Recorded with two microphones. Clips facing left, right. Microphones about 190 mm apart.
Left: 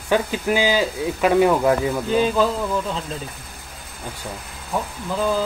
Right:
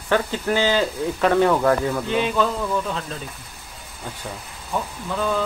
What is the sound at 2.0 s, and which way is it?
Speech, 35° left (ahead or behind).